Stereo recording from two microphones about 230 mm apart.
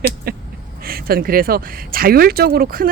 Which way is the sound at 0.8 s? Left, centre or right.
Right.